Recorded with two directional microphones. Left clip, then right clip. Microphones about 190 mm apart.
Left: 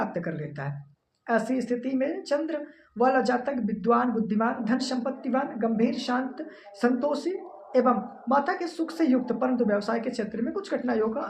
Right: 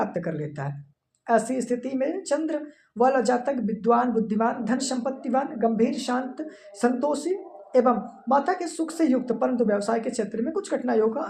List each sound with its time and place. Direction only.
0.0 s speech: 50° right (ahead or behind)